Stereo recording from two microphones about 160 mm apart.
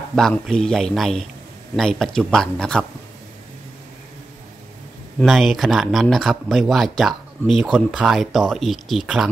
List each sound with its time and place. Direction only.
0.1 s a man's voice: 5° left (ahead or behind)
5.2 s a man's voice: centre (ahead or behind)